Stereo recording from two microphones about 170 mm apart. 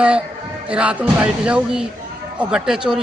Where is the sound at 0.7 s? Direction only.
5° right (ahead or behind).